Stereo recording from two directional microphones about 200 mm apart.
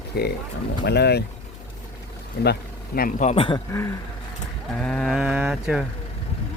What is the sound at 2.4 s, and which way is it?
Speech, 55° left (ahead or behind).